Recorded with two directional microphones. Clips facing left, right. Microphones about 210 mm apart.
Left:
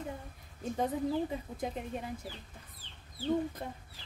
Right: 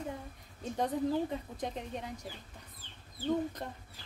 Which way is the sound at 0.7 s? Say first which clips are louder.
Right 1 dB; 5° left (ahead or behind).